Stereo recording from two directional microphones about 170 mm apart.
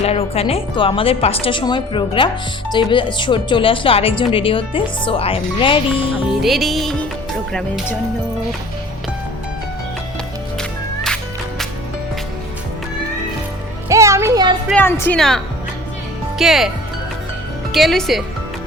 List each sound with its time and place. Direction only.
0.0 s a woman's voice: 35° left (ahead or behind)
6.4 s music: centre (ahead or behind)
10.6 s music: 5° left (ahead or behind)
13.8 s music: 15° right (ahead or behind)
14.7 s a woman's voice: 10° left (ahead or behind)
16.4 s music: centre (ahead or behind)
17.7 s speech: centre (ahead or behind)